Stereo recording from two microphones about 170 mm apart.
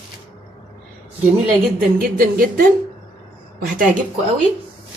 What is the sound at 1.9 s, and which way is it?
Speech, 60° right (ahead or behind).